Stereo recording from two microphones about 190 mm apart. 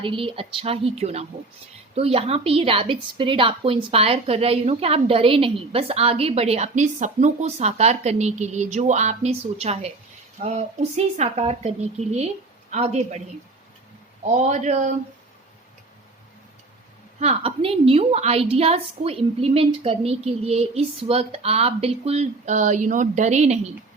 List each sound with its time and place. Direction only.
0.0 s a woman's voice: 30° right (ahead or behind)
14.3 s a woman's voice: 40° right (ahead or behind)
17.2 s a woman's voice: 30° right (ahead or behind)